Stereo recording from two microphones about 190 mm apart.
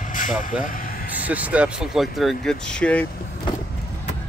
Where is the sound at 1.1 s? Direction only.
10° right (ahead or behind).